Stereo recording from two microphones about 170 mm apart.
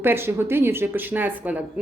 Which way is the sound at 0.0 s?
15° right (ahead or behind).